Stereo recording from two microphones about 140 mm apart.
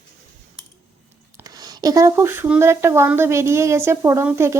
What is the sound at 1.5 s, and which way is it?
Speech, 30° right (ahead or behind).